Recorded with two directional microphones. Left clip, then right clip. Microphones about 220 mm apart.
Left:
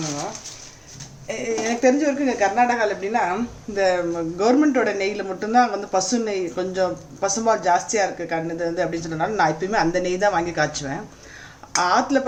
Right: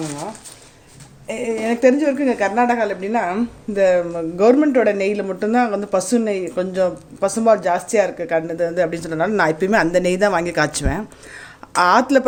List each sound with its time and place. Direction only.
1.3 s speech: 40° right (ahead or behind)